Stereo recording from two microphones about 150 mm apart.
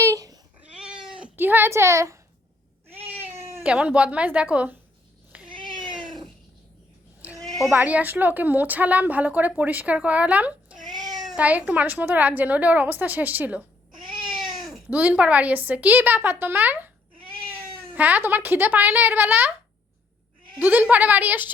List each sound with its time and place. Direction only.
0.0 s cat: 20° right (ahead or behind)
0.7 s cat: 5° right (ahead or behind)
1.2 s a woman's voice: 10° right (ahead or behind)
3.1 s cat: 15° right (ahead or behind)
4.5 s speech: 10° right (ahead or behind)
5.5 s cat: 35° right (ahead or behind)
7.7 s speech: 10° right (ahead or behind)
11.0 s cat: 25° right (ahead or behind)
11.3 s speech: 10° right (ahead or behind)
14.0 s cat: 30° right (ahead or behind)
14.6 s speech: 5° right (ahead or behind)
17.2 s cat: 35° right (ahead or behind)
17.9 s speech: 10° right (ahead or behind)
20.6 s speech: 10° right (ahead or behind)